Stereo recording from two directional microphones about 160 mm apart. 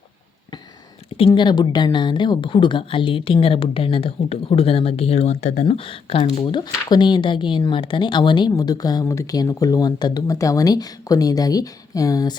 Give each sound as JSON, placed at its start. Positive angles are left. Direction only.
{"t": 1.3, "sound": "speech", "side_deg": 25}
{"t": 5.6, "sound": "speech", "side_deg": 35}
{"t": 6.4, "sound": "speech", "side_deg": 25}